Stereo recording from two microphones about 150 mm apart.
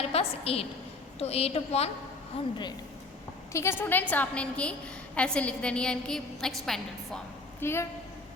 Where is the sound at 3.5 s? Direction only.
15° left (ahead or behind).